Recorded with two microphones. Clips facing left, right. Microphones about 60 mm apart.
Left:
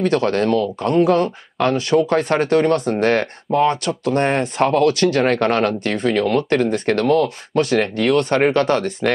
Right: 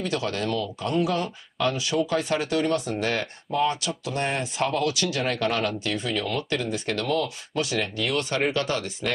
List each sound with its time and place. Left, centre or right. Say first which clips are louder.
0.0 s speech: left 10 dB; left